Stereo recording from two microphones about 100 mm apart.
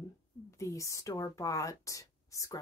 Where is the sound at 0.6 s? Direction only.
30° left (ahead or behind).